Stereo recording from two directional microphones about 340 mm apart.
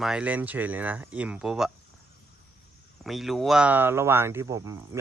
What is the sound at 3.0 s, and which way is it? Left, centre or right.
Speech, centre.